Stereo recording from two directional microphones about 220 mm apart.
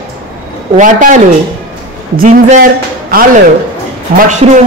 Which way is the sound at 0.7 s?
35° right (ahead or behind).